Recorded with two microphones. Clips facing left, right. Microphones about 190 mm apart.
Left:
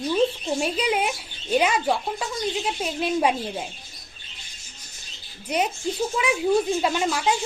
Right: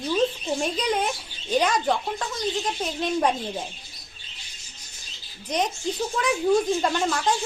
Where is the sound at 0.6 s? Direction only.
10° left (ahead or behind).